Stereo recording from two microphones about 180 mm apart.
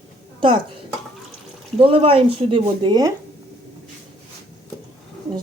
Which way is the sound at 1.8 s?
30° right (ahead or behind).